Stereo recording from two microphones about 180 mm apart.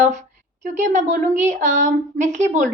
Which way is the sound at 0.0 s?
40° right (ahead or behind).